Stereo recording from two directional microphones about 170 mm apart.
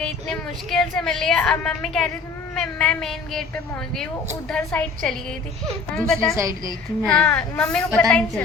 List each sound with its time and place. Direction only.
0.0 s a woman's voice: 5° left (ahead or behind)
4.4 s a woman's voice: 5° left (ahead or behind)